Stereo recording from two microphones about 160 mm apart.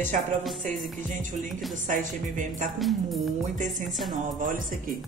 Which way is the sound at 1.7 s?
50° right (ahead or behind).